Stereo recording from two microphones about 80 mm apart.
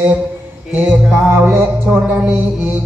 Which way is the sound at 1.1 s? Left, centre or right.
Right.